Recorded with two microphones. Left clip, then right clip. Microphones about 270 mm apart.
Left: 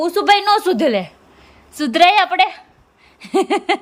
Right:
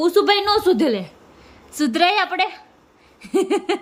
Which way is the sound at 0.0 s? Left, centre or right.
Centre.